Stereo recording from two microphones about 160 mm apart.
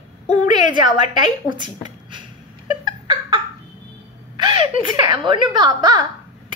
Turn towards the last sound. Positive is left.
turn(degrees=-25)  # may be behind; listen again after turning